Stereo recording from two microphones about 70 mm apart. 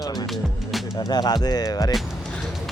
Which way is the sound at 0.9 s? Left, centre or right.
Left.